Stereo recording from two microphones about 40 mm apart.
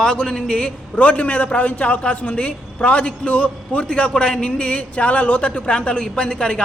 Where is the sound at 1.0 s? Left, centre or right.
Left.